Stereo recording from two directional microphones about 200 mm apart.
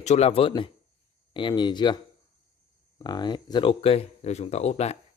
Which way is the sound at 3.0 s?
20° left (ahead or behind).